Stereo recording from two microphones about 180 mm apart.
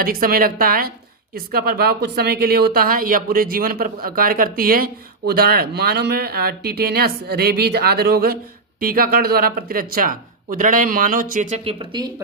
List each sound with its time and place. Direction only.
0.0 s speech: 55° right (ahead or behind); by 12.0 s 30° right (ahead or behind)